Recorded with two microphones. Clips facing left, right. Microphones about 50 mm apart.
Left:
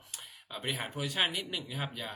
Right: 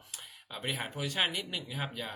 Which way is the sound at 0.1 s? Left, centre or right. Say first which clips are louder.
Left 1 dB; centre.